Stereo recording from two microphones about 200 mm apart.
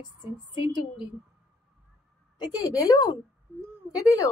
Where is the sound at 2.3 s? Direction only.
20° left (ahead or behind).